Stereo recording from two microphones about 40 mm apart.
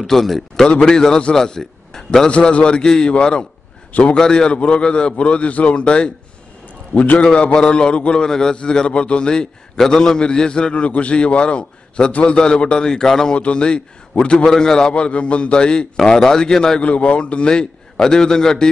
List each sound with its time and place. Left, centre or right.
0.0 s a man's voice: centre
0.7 s a man's voice: centre
2.2 s a man's voice: left
4.2 s a man's voice: centre
7.3 s a man's voice: left
8.3 s a man's voice: centre; by 12.4 s left
12.4 s a man's voice: left
13.3 s a man's voice: left
16.8 s a man's voice: left; by 18.7 s centre